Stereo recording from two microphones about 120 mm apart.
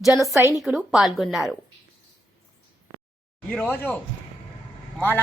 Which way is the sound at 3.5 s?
10° left (ahead or behind).